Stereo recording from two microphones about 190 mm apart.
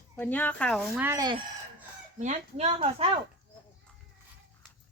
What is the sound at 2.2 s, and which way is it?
Speech, 35° right (ahead or behind).